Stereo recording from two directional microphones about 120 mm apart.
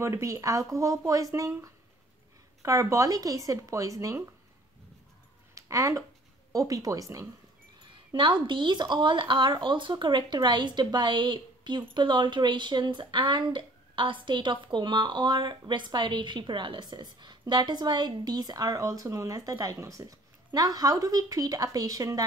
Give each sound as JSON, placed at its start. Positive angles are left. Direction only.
{"t": 0.0, "sound": "speech", "side_deg": -25}
{"t": 2.6, "sound": "speech", "side_deg": -25}
{"t": 5.5, "sound": "speech", "side_deg": -30}
{"t": 7.8, "sound": "speech", "side_deg": -40}